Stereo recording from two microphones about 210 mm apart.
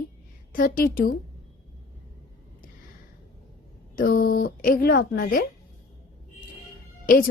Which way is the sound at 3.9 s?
40° left (ahead or behind).